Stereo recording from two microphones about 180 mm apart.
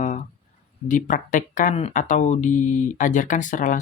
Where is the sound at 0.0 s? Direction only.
45° left (ahead or behind).